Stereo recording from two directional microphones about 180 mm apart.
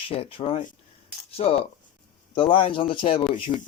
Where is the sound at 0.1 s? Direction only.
30° left (ahead or behind).